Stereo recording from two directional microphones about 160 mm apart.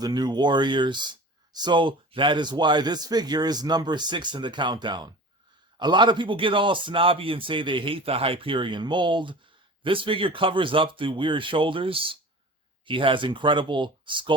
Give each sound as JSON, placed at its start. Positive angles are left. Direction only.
{"t": 0.0, "sound": "a man's voice", "side_deg": -25}